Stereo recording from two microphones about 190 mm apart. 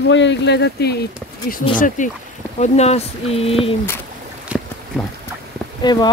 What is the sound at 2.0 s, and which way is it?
Speech, 40° left (ahead or behind).